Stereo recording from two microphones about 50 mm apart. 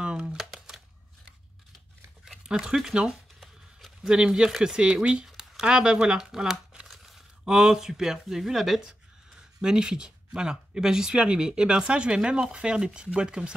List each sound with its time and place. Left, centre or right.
0.4 s typewriter: centre
2.6 s speech: centre
3.1 s a sound: centre
4.1 s speech: centre